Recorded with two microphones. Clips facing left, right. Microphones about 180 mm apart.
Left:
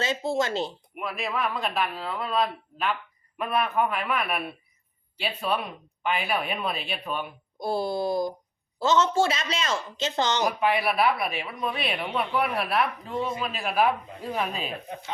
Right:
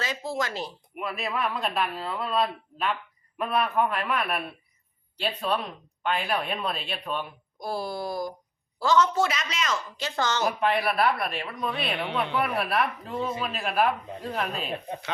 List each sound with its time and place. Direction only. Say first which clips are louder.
0.0 s a woman's voice: left 4 dB; 25° left (ahead or behind)
0.9 s speech: even; centre (ahead or behind)
7.6 s a woman's voice: left 4 dB; 25° left (ahead or behind)
10.6 s speech: even; 5° left (ahead or behind)